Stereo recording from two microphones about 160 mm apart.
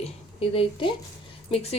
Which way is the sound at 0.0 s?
35° left (ahead or behind).